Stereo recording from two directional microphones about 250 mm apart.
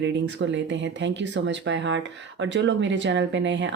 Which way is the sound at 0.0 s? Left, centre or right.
Right.